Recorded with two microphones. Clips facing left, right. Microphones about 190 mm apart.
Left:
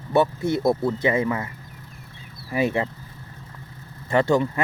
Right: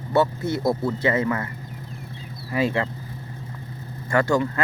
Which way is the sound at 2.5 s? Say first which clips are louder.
Even; 20° left (ahead or behind).